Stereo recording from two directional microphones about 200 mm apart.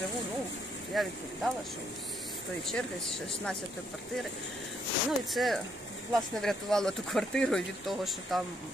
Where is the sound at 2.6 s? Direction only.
Centre (ahead or behind).